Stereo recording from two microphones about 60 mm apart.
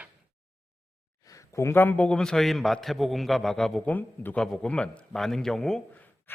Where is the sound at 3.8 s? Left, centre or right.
Left.